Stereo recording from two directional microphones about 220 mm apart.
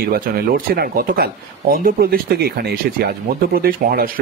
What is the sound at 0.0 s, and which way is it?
Speech, 45° right (ahead or behind).